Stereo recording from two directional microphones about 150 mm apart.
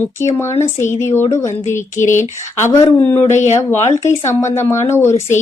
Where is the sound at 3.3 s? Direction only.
50° left (ahead or behind).